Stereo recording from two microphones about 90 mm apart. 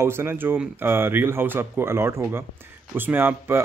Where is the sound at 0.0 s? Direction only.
25° right (ahead or behind).